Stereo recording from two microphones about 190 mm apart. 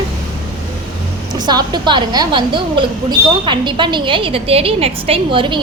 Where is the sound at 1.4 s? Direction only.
20° right (ahead or behind).